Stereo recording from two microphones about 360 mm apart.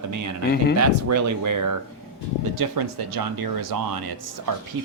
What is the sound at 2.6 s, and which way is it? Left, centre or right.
Speech, right.